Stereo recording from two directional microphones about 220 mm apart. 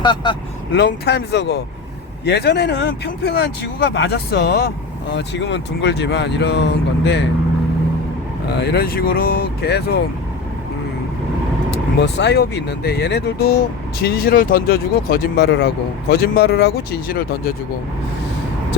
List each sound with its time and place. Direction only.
0.0 s speech: 20° left (ahead or behind)
0.7 s speech: 50° left (ahead or behind)
8.5 s speech: 45° left (ahead or behind)
11.9 s speech: 50° left (ahead or behind)